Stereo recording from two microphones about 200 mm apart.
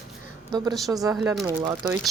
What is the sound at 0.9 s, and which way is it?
Speech, 15° right (ahead or behind).